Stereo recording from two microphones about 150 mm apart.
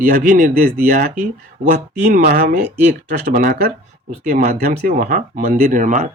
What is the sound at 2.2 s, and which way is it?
Speech, 85° right.